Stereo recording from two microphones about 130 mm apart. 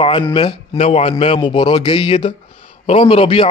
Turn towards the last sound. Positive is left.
turn(degrees=45)  # may be behind; listen again after turning